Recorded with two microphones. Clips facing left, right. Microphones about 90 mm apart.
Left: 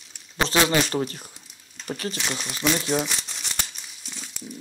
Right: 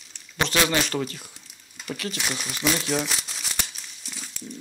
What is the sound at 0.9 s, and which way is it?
Speech, 40° left (ahead or behind).